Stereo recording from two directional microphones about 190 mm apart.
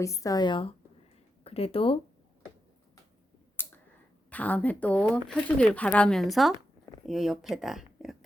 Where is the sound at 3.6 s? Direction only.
10° left (ahead or behind).